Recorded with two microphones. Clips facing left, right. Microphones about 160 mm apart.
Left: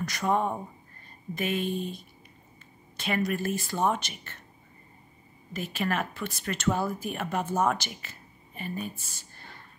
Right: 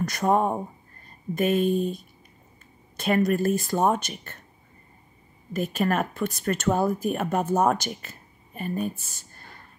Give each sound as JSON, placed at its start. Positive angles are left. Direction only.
{"t": 0.0, "sound": "speech", "side_deg": -45}
{"t": 5.5, "sound": "speech", "side_deg": -45}